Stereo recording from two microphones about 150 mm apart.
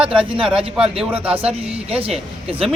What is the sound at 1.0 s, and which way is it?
Speech, 10° right (ahead or behind).